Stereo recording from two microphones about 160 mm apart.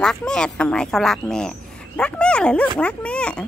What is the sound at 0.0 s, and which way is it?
Speech, 5° left (ahead or behind).